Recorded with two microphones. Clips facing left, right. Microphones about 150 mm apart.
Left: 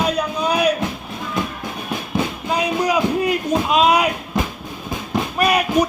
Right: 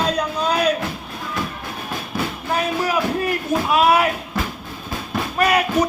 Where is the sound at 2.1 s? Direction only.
15° left (ahead or behind).